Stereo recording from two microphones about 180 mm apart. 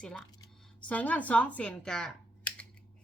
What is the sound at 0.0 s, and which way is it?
A woman's voice, 5° left (ahead or behind).